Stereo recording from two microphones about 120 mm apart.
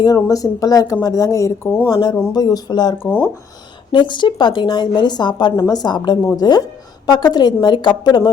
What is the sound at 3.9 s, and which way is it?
A woman's voice, 40° left (ahead or behind).